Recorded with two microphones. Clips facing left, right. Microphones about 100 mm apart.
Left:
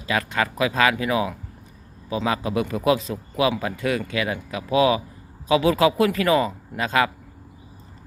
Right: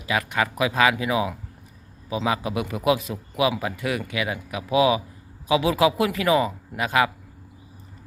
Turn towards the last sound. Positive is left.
turn(degrees=-15)  # may be behind; listen again after turning